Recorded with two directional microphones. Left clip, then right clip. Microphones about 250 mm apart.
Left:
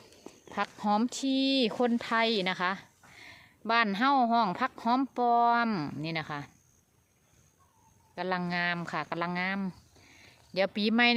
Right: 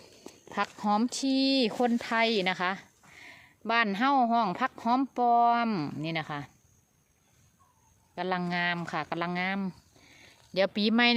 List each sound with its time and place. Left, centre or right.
0.4 s speech: centre
8.1 s speech: centre